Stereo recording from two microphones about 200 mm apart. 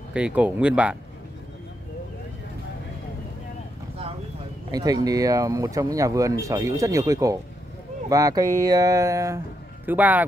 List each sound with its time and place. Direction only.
0.1 s speech: 5° right (ahead or behind)
4.6 s speech: 20° right (ahead or behind)